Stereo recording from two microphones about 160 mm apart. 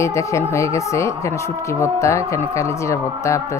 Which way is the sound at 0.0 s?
20° left (ahead or behind).